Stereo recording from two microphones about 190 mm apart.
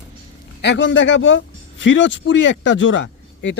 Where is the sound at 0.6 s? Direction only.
70° left (ahead or behind).